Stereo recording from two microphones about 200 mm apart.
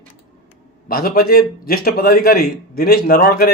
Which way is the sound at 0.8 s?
50° left (ahead or behind).